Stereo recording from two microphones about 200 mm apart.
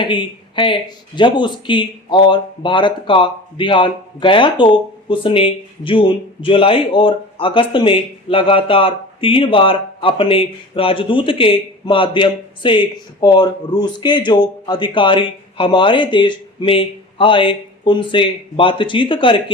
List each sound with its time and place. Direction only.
0.0 s speech: 25° left (ahead or behind)